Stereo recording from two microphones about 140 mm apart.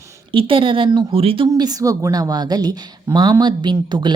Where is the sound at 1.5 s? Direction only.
25° right (ahead or behind).